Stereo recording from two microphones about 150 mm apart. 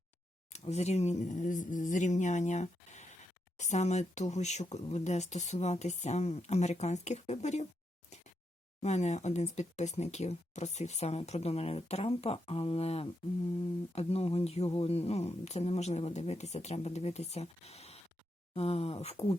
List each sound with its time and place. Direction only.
0.5 s speech: 45° left (ahead or behind)
8.8 s speech: 50° left (ahead or behind)